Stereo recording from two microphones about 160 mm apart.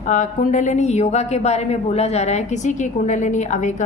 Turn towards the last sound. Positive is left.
turn(degrees=50)  # may be behind; listen again after turning